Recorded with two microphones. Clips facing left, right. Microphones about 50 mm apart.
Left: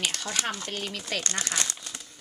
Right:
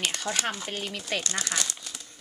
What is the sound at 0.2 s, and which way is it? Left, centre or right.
Speech, centre.